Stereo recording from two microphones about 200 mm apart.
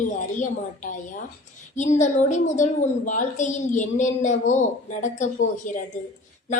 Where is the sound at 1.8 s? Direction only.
35° left (ahead or behind).